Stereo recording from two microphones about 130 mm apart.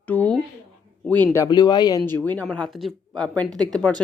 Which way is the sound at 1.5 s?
35° left (ahead or behind).